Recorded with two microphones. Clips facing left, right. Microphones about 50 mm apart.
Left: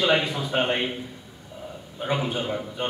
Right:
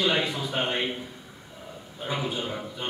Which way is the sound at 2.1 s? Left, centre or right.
Left.